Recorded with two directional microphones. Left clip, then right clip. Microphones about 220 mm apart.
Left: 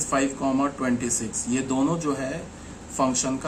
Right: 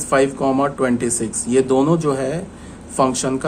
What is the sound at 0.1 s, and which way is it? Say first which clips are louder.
Speech: right 9 dB; 45° right (ahead or behind).